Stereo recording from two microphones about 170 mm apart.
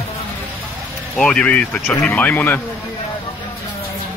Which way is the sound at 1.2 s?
5° left (ahead or behind).